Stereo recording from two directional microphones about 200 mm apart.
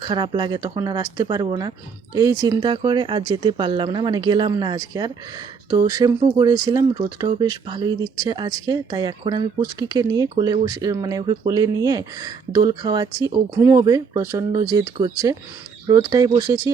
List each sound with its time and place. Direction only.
0.0 s speech: 20° right (ahead or behind)